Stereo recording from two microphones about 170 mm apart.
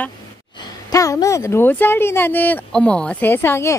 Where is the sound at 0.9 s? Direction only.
20° left (ahead or behind).